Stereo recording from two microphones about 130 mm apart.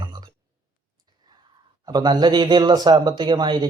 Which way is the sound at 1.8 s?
30° right (ahead or behind).